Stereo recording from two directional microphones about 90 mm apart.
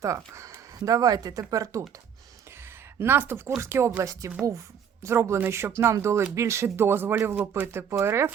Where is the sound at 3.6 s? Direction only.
30° right (ahead or behind).